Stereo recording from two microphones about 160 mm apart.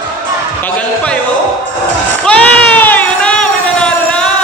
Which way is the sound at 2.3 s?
10° left (ahead or behind).